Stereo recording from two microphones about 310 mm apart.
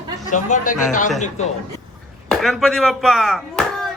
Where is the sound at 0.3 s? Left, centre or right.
Left.